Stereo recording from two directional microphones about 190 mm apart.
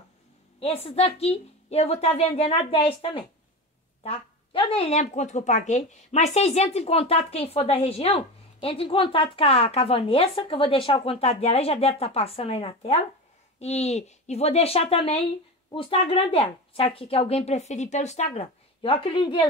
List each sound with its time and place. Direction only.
0.6 s a woman's voice: 30° left (ahead or behind)